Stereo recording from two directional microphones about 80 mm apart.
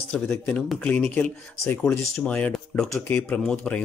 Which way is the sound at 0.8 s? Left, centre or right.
Centre.